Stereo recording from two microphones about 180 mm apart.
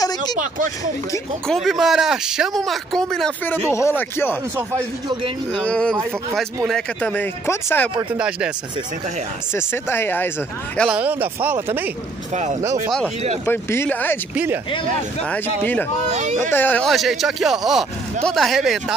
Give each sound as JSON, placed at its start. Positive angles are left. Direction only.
{"t": 0.0, "sound": "a sound", "side_deg": 20}
{"t": 0.4, "sound": "speech", "side_deg": -45}
{"t": 1.5, "sound": "speech", "side_deg": 0}
{"t": 3.7, "sound": "speech", "side_deg": 15}
{"t": 5.5, "sound": "speech", "side_deg": 5}
{"t": 8.2, "sound": "speech", "side_deg": -5}
{"t": 9.5, "sound": "speech", "side_deg": 10}
{"t": 10.9, "sound": "speech", "side_deg": -10}
{"t": 13.5, "sound": "speech", "side_deg": 15}
{"t": 14.3, "sound": "speech", "side_deg": -10}
{"t": 15.2, "sound": "speech", "side_deg": 10}
{"t": 16.1, "sound": "speech", "side_deg": -40}
{"t": 16.5, "sound": "speech", "side_deg": 10}